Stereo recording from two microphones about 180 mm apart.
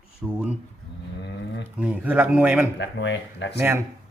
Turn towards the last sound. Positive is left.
turn(degrees=-15)  # may be behind; listen again after turning